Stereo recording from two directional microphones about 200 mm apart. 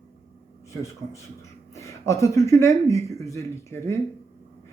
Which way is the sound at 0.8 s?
15° left (ahead or behind).